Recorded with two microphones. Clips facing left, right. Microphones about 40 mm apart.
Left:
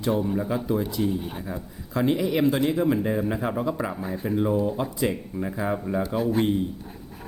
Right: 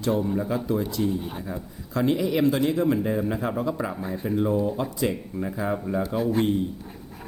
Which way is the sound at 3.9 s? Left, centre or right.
Centre.